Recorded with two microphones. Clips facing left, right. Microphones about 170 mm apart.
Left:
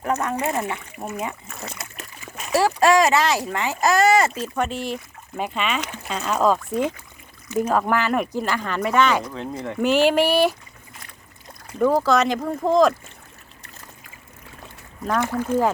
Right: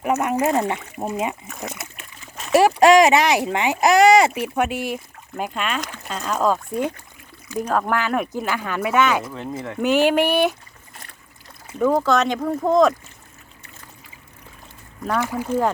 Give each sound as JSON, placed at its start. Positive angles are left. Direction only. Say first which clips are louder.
{"t": 0.0, "sound": "speech", "louder": "right 4 dB", "side_deg": -15}
{"t": 2.5, "sound": "speech", "louder": "right 4 dB", "side_deg": -20}
{"t": 11.8, "sound": "speech", "louder": "even", "side_deg": 0}
{"t": 15.0, "sound": "speech", "louder": "even", "side_deg": -10}